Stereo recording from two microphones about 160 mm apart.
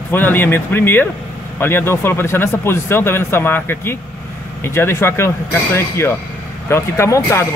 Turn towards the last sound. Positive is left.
turn(degrees=20)  # may be behind; listen again after turning